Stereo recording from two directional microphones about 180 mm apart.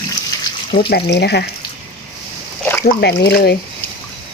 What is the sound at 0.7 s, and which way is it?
Speech, 60° left (ahead or behind).